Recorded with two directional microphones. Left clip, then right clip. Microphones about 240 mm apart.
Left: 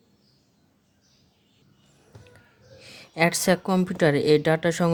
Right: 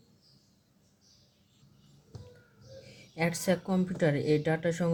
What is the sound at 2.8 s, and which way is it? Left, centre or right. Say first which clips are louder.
Speech: left 10 dB; left.